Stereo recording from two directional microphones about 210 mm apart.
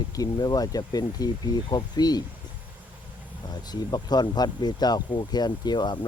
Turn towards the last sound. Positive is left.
turn(degrees=20)  # may be behind; listen again after turning